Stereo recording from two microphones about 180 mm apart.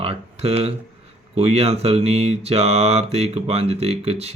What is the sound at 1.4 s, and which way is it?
Speech, 35° right (ahead or behind).